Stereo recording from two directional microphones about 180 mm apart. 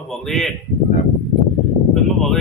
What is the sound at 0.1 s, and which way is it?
Speech, centre (ahead or behind).